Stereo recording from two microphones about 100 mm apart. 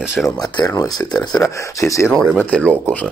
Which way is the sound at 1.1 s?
5° left (ahead or behind).